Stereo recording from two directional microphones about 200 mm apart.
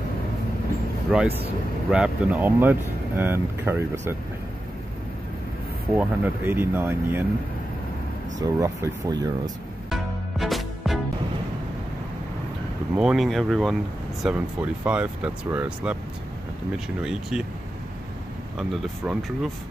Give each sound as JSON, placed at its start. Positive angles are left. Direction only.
{"t": 1.1, "sound": "speech", "side_deg": 0}
{"t": 5.9, "sound": "speech", "side_deg": -10}
{"t": 8.4, "sound": "speech", "side_deg": -15}
{"t": 9.8, "sound": "music", "side_deg": 0}
{"t": 12.9, "sound": "speech", "side_deg": 0}
{"t": 17.0, "sound": "speech", "side_deg": -5}
{"t": 18.6, "sound": "speech", "side_deg": 0}